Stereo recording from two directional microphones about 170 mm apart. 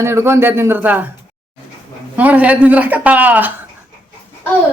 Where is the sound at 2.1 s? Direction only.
10° right (ahead or behind).